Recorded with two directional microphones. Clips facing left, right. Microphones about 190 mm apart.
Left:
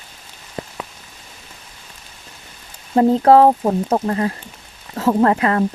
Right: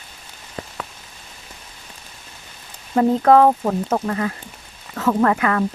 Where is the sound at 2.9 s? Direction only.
30° left (ahead or behind).